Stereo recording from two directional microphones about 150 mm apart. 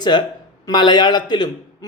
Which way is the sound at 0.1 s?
30° left (ahead or behind).